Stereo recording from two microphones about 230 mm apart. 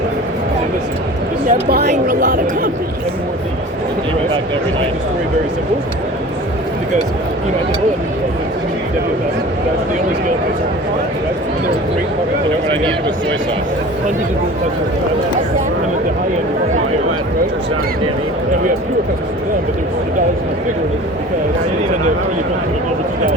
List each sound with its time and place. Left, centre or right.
1.5 s speech: right